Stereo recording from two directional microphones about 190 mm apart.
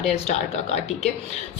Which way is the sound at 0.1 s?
35° left (ahead or behind).